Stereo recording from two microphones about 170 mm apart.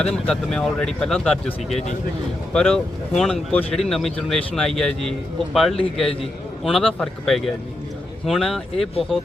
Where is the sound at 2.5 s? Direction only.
5° left (ahead or behind).